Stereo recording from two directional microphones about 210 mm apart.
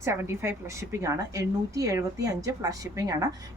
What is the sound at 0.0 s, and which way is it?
Speech, 15° right (ahead or behind).